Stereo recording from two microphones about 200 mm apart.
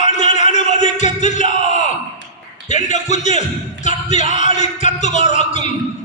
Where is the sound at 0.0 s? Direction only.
35° left (ahead or behind).